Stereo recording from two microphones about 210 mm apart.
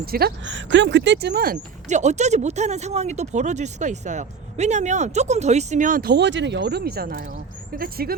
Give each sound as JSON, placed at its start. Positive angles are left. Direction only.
{"t": 0.0, "sound": "speech", "side_deg": -45}